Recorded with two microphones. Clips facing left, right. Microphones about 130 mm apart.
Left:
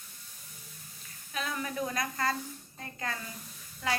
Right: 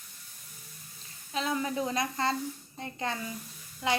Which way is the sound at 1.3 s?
25° right (ahead or behind).